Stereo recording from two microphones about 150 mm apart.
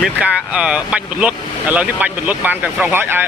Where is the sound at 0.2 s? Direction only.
5° right (ahead or behind).